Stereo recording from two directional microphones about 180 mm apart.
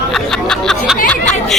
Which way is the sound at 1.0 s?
5° left (ahead or behind).